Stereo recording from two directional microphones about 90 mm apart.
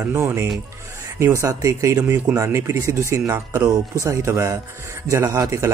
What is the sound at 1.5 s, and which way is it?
Speech, 40° right (ahead or behind).